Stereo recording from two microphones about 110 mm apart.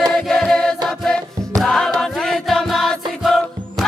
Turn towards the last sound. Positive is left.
turn(degrees=0)  # may be behind; listen again after turning